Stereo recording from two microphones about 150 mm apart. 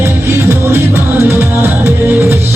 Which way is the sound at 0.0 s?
15° right (ahead or behind).